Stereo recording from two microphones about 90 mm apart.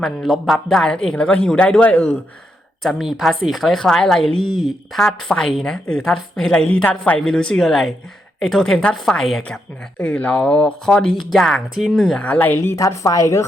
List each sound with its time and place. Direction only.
0.0 s speech: 5° left (ahead or behind)
2.8 s a woman's voice: centre (ahead or behind)
10.0 s speech: 15° left (ahead or behind)
12.7 s a woman's voice: 35° left (ahead or behind)